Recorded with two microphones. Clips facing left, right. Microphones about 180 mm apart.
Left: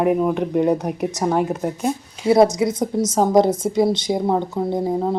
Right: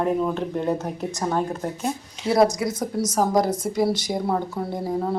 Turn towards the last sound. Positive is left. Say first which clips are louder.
# left 5 dB
turn(degrees=15)  # may be behind; listen again after turning